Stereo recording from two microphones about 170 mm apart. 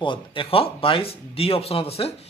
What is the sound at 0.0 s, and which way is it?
Speech, 30° left (ahead or behind).